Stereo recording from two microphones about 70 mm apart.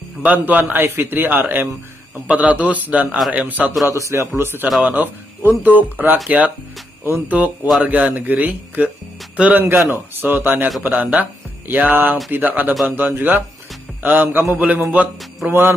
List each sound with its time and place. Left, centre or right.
0.2 s speech: right
3.9 s a man's voice: right